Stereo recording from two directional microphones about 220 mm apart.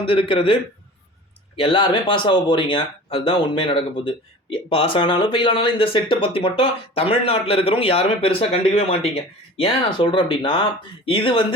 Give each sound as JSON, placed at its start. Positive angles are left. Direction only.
{"t": 0.0, "sound": "speech", "side_deg": 25}